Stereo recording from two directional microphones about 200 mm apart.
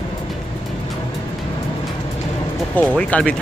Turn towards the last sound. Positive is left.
turn(degrees=5)  # may be behind; listen again after turning